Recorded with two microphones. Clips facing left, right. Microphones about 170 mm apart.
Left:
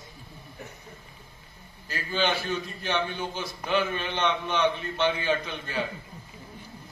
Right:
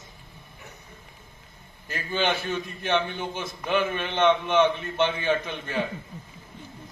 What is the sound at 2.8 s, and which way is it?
A man's voice, 20° right (ahead or behind).